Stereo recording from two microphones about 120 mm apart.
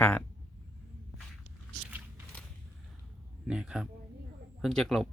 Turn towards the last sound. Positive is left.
turn(degrees=5)  # may be behind; listen again after turning